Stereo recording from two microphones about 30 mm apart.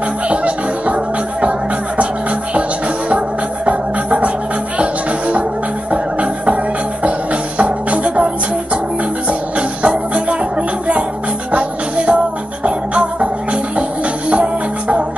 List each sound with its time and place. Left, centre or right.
0.3 s music: right
3.6 s music: right
5.9 s music: right
9.3 s music: right
11.5 s music: right